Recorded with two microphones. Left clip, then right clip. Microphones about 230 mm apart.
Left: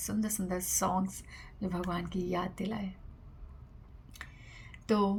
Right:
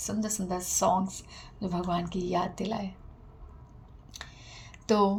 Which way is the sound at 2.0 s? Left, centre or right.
Left.